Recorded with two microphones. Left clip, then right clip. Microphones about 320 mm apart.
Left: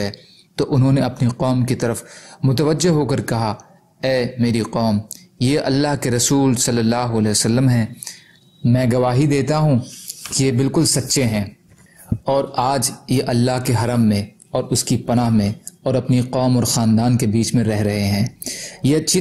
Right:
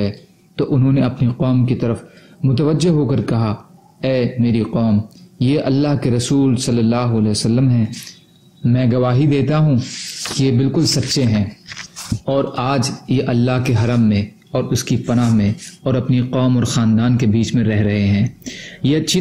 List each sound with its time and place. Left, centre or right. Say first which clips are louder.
0.8 s a man's voice: right 1 dB; left